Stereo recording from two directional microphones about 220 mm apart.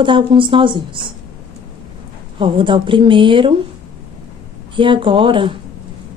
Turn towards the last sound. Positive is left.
turn(degrees=-25)  # may be behind; listen again after turning